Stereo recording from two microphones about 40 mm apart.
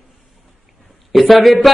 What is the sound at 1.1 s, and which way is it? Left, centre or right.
Speech, centre.